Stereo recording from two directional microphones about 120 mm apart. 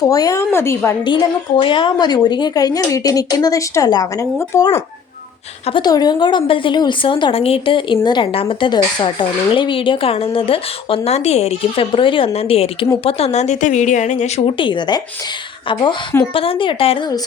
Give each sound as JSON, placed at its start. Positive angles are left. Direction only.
{"t": 0.1, "sound": "speech", "side_deg": 30}
{"t": 1.6, "sound": "a woman's voice", "side_deg": 45}
{"t": 5.8, "sound": "a woman's voice", "side_deg": 35}
{"t": 14.4, "sound": "a woman's voice", "side_deg": 40}